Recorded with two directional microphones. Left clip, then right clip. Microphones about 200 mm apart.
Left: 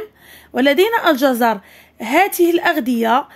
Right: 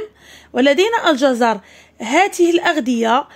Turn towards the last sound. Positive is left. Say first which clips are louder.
# even
turn(degrees=0)  # may be behind; listen again after turning